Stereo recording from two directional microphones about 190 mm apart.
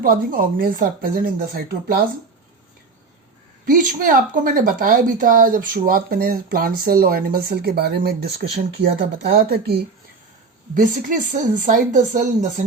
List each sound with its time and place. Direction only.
0.0 s speech: 50° right (ahead or behind)
3.7 s speech: 45° right (ahead or behind)
10.8 s speech: 45° right (ahead or behind)